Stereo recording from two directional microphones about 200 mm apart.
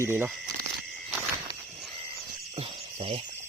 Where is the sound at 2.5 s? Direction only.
30° right (ahead or behind).